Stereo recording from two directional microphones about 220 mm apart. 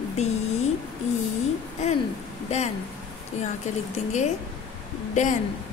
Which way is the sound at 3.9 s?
30° left (ahead or behind).